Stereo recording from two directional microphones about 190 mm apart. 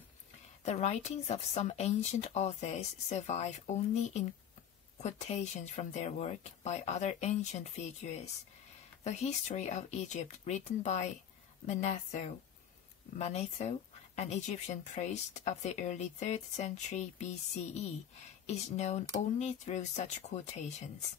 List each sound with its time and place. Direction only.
0.7 s speech: 35° left (ahead or behind)
18.5 s speech: 35° left (ahead or behind)